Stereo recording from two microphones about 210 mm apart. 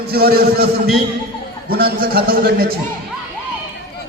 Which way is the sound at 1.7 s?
45° right (ahead or behind).